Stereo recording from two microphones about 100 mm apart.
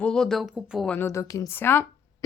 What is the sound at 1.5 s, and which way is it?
Speech, 20° left (ahead or behind).